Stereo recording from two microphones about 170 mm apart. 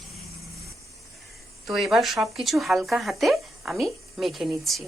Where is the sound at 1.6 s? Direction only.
Centre (ahead or behind).